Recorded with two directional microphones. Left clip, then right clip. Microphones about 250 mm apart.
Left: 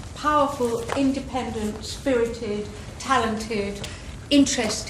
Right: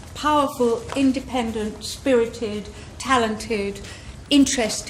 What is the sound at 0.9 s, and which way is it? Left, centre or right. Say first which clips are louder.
Speech: right 1 dB; centre.